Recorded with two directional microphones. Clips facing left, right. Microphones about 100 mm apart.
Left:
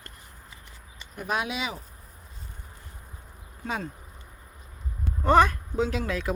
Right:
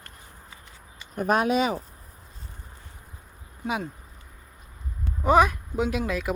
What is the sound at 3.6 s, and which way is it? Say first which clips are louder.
Speech: right 3 dB; 15° right (ahead or behind).